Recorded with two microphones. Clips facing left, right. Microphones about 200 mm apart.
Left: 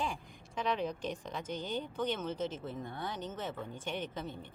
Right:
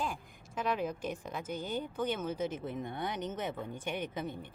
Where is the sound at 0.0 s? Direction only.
5° right (ahead or behind).